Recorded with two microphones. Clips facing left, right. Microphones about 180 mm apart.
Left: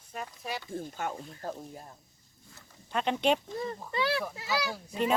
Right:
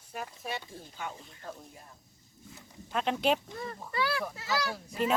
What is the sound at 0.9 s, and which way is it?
Speech, 45° left (ahead or behind).